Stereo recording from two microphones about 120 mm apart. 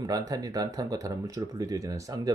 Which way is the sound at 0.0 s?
30° right (ahead or behind).